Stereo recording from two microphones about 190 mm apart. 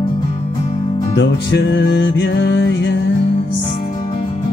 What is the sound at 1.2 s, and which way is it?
Music, 70° left (ahead or behind).